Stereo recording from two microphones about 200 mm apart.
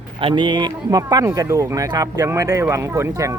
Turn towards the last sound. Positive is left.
turn(degrees=-15)  # may be behind; listen again after turning